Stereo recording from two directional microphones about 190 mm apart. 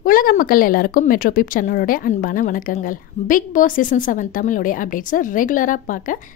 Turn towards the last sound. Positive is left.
turn(degrees=45)  # may be behind; listen again after turning